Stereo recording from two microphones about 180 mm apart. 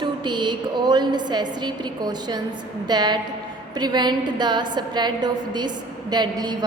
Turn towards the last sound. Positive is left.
turn(degrees=-25)  # may be behind; listen again after turning